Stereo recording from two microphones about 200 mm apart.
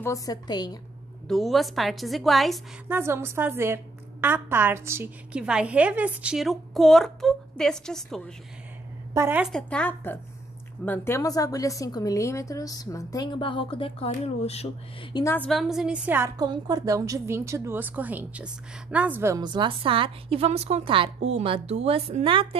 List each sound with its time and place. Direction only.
0.0 s a woman's voice: 15° left (ahead or behind)
1.2 s a woman's voice: centre (ahead or behind)
2.9 s a woman's voice: 10° right (ahead or behind)
9.1 s a woman's voice: 10° right (ahead or behind)
9.5 s a woman's voice: 5° left (ahead or behind); by 14.7 s 30° left (ahead or behind)
15.1 s a woman's voice: 10° left (ahead or behind); by 22.6 s 25° right (ahead or behind)